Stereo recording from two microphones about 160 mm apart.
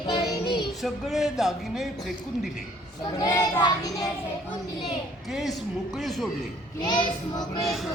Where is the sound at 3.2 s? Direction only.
15° left (ahead or behind).